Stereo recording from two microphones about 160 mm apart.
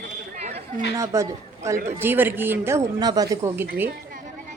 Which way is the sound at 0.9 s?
20° right (ahead or behind).